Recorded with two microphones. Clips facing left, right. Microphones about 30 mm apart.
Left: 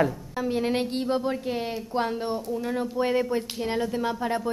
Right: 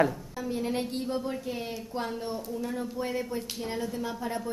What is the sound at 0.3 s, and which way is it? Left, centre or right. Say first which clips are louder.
Speech: left 6 dB; left.